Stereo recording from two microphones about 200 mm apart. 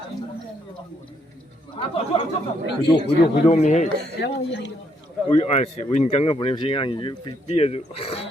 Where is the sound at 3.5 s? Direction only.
35° left (ahead or behind).